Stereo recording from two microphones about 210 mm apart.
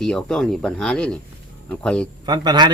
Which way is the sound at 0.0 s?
5° left (ahead or behind).